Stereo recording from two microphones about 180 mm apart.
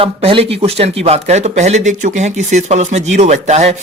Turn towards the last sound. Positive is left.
turn(degrees=-40)  # may be behind; listen again after turning